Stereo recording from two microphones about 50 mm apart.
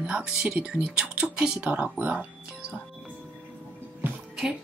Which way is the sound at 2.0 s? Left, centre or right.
Right.